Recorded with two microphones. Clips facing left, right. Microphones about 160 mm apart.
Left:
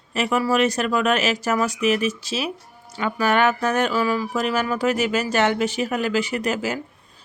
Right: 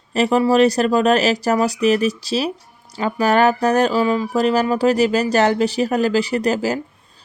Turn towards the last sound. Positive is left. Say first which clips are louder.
# right 5 dB
turn(degrees=-35)  # may be behind; listen again after turning